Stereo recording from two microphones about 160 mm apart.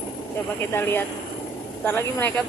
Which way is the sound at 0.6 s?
15° left (ahead or behind).